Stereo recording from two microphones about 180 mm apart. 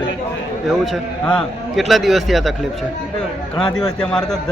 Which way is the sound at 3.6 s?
5° left (ahead or behind).